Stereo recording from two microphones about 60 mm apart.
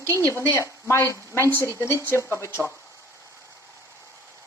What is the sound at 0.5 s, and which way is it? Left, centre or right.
Speech, left.